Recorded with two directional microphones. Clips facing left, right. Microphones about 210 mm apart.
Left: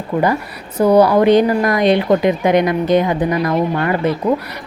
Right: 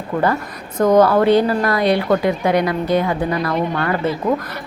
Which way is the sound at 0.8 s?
10° left (ahead or behind).